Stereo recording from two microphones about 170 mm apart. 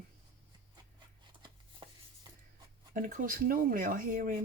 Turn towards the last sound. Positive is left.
turn(degrees=-50)  # may be behind; listen again after turning